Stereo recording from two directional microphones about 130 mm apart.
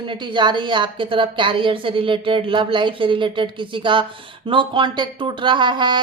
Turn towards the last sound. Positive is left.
turn(degrees=-35)  # may be behind; listen again after turning